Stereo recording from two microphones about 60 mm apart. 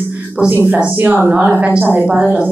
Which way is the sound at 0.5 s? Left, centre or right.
Right.